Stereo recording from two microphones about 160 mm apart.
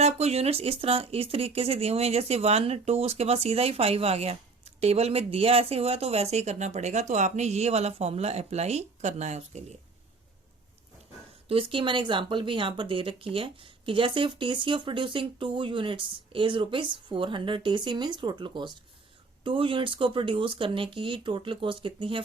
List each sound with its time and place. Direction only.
0.0 s speech: 40° right (ahead or behind)
11.4 s speech: 35° right (ahead or behind)